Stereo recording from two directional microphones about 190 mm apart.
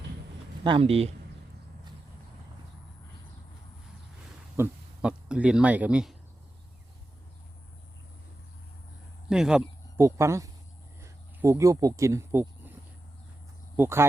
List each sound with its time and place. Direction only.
0.6 s speech: 25° right (ahead or behind)
4.5 s a sound: 10° right (ahead or behind)
9.3 s speech: 5° right (ahead or behind)
10.0 s speech: 15° right (ahead or behind)
13.7 s speech: 15° right (ahead or behind)